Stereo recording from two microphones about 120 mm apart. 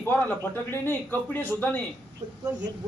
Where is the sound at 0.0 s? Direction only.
15° left (ahead or behind).